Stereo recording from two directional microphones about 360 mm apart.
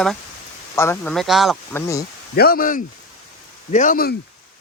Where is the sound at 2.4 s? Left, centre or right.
Left.